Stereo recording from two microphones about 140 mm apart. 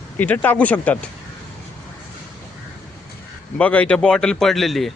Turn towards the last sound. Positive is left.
turn(degrees=0)  # may be behind; listen again after turning